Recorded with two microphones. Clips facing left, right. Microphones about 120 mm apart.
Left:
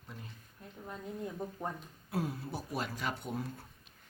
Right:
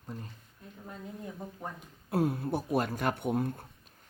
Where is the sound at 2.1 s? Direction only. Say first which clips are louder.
Right 8 dB; 55° right (ahead or behind).